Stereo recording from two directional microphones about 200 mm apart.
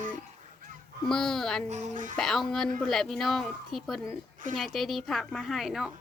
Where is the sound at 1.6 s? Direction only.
40° right (ahead or behind).